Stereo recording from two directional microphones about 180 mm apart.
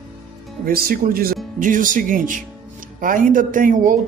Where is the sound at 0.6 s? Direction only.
55° right (ahead or behind).